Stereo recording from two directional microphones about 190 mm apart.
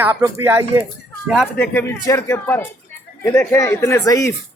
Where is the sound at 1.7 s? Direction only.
10° left (ahead or behind).